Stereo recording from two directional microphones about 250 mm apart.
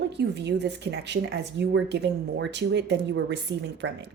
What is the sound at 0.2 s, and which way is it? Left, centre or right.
Speech, right.